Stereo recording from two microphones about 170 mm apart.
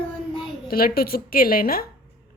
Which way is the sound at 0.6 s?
60° left (ahead or behind).